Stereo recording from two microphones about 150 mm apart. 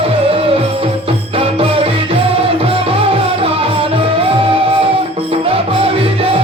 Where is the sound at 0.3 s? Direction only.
40° right (ahead or behind).